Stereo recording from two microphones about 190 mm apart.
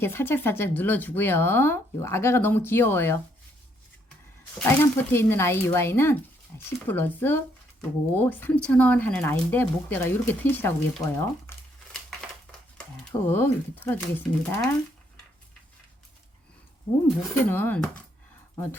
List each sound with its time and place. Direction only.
0.0 s speech: 10° left (ahead or behind)
4.6 s speech: 10° left (ahead or behind)
13.1 s speech: 10° left (ahead or behind)
17.5 s speech: 10° left (ahead or behind)